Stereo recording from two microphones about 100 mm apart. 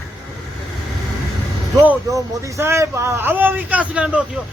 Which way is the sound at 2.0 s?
30° right (ahead or behind).